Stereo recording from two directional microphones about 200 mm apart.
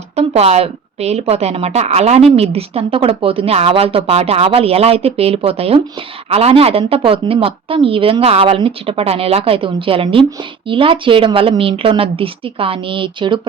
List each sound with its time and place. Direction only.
0.2 s a woman's voice: 30° right (ahead or behind)